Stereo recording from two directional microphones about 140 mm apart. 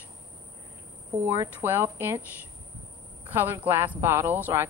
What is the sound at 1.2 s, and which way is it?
A woman's voice, 20° right (ahead or behind).